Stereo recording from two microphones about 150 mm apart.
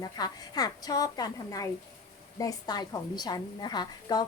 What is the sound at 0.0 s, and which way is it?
A woman's voice, 25° left (ahead or behind).